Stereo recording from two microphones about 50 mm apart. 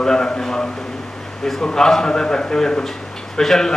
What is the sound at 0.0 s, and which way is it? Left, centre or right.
A man's voice, centre.